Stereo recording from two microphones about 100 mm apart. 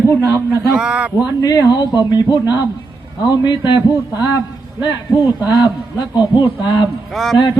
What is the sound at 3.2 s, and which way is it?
Speech, 45° left (ahead or behind).